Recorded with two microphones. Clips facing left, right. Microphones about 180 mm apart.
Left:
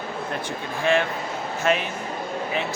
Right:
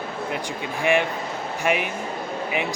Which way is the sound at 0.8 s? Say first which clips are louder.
Even; 15° right (ahead or behind).